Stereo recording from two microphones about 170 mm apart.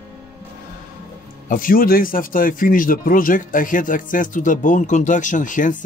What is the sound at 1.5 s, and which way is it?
A man's voice, 55° left (ahead or behind).